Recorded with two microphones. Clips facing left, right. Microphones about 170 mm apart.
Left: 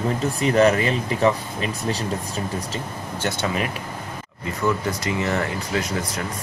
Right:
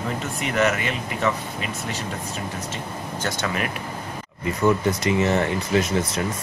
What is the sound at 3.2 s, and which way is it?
Speech, 25° left (ahead or behind).